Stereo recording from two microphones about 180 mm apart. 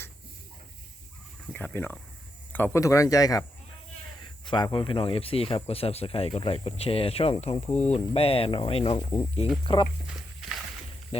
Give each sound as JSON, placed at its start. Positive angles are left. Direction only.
{"t": 1.5, "sound": "speech", "side_deg": 10}